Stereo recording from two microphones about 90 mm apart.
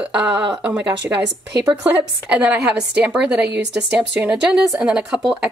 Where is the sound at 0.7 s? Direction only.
40° right (ahead or behind).